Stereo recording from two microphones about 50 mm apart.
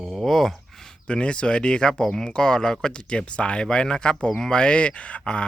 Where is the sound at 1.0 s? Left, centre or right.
Left.